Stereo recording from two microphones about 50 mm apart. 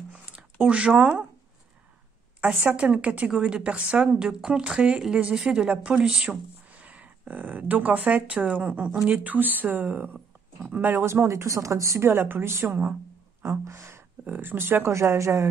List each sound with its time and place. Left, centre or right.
0.1 s a sound: centre
2.7 s a woman's voice: right
6.0 s speech: centre
6.7 s speech: right
11.1 s speech: right
12.0 s speech: right
13.4 s gasp: right
14.2 s speech: right
14.9 s speech: right